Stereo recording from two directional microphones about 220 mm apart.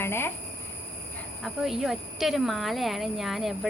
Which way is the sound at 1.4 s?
Centre (ahead or behind).